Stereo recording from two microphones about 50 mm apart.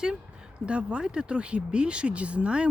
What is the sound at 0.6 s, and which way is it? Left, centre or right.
Speech, right.